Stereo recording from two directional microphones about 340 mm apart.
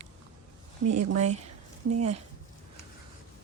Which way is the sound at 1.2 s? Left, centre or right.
Centre.